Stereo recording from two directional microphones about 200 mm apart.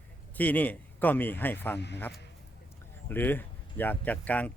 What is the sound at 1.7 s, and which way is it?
Speech, 60° left (ahead or behind).